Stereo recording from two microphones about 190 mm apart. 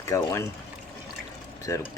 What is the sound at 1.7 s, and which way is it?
Speech, 15° left (ahead or behind).